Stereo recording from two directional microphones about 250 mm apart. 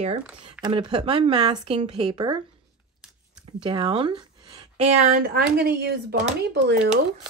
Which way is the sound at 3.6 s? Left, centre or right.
Right.